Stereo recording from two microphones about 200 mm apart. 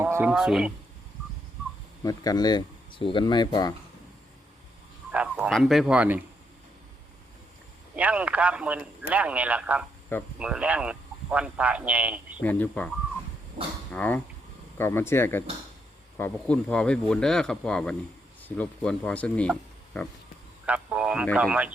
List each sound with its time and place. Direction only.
0.0 s speech: 10° right (ahead or behind)
2.0 s speech: 20° left (ahead or behind)
5.1 s a man's voice: 5° right (ahead or behind)
7.9 s speech: 5° right (ahead or behind)
12.4 s speech: 10° left (ahead or behind)
13.9 s speech: 5° left (ahead or behind)
20.7 s a man's voice: 5° right (ahead or behind)